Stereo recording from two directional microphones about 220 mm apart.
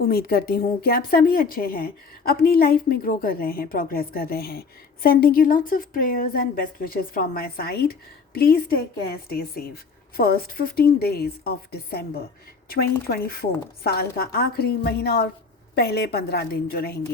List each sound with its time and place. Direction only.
0.0 s a woman's voice: 45° left (ahead or behind)